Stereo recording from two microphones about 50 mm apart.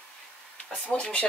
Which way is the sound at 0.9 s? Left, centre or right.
Left.